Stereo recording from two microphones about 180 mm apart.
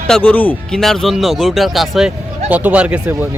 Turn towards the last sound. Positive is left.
turn(degrees=-5)  # may be behind; listen again after turning